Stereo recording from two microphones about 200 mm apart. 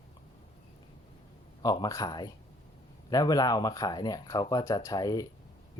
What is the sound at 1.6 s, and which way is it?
Speech, 20° left (ahead or behind).